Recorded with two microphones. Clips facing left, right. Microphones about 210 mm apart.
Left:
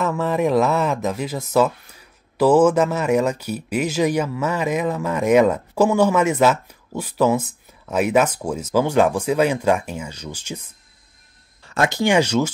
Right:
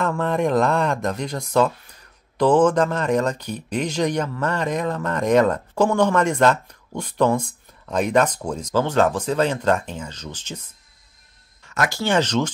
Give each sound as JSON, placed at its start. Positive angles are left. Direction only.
{"t": 0.0, "sound": "speech", "side_deg": 5}
{"t": 11.6, "sound": "a sound", "side_deg": 30}
{"t": 12.0, "sound": "speech", "side_deg": 10}